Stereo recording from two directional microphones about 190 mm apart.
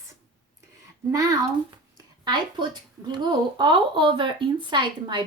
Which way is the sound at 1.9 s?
25° right (ahead or behind).